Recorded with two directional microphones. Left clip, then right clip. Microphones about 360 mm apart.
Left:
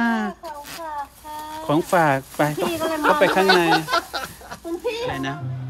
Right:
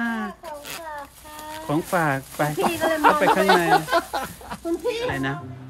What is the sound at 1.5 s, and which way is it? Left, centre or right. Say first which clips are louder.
Speech: left 4 dB; centre.